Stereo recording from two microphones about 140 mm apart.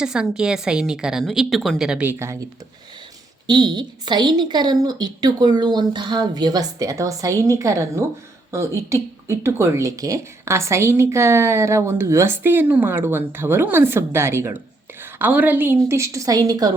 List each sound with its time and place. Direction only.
0.0 s a woman's voice: 5° right (ahead or behind)
3.4 s speech: 30° right (ahead or behind)